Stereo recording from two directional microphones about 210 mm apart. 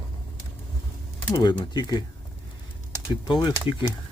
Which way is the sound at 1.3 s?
20° left (ahead or behind).